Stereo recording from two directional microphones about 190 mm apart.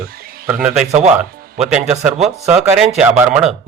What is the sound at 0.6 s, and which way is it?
Speech, 5° right (ahead or behind).